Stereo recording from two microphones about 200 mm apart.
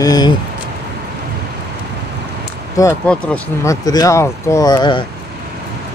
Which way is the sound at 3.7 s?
15° left (ahead or behind).